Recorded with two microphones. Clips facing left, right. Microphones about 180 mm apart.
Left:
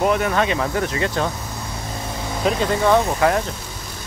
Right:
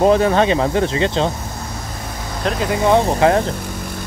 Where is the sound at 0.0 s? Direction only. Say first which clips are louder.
Right 6 dB; 30° right (ahead or behind).